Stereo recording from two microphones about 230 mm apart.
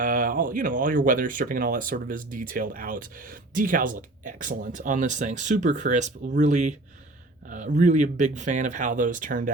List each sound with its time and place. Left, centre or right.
0.0 s speech: right